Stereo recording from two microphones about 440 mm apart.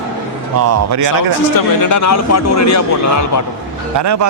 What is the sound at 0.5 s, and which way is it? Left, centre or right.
Speech, right.